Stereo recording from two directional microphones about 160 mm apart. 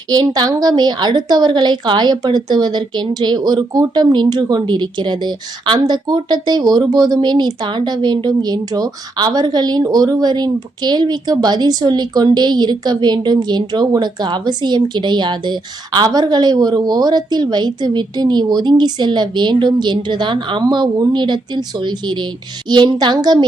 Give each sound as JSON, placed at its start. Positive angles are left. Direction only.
{"t": 0.1, "sound": "a woman's voice", "side_deg": -25}